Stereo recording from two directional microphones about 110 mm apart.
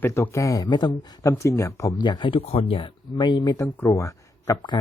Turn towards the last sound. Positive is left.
turn(degrees=40)  # may be behind; listen again after turning